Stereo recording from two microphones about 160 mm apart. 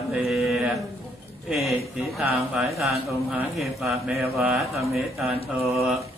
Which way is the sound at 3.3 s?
Centre (ahead or behind).